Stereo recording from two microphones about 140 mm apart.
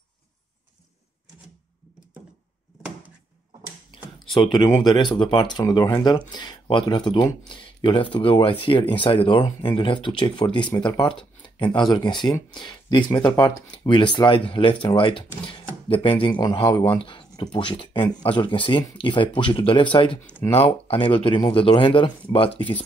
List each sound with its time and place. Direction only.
3.9 s computer keyboard: 35° left (ahead or behind)
4.6 s speech: 30° left (ahead or behind)